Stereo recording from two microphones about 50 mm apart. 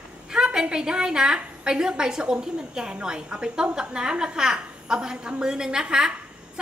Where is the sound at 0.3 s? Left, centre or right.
Centre.